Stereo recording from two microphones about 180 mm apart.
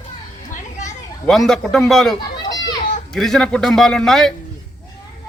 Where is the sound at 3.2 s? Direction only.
Centre (ahead or behind).